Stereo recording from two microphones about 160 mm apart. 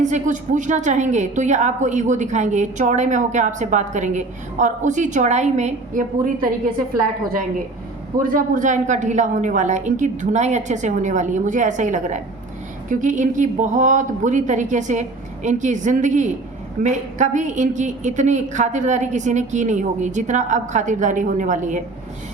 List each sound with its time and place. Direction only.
0.0 s a woman's voice: 50° right (ahead or behind)
8.2 s a woman's voice: 55° right (ahead or behind)